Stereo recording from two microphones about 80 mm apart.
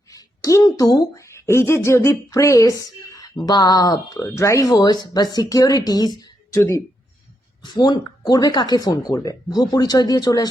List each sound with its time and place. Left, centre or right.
0.1 s a woman's voice: left
4.4 s speech: left
4.7 s speech: left
6.5 s speech: left
7.6 s speech: left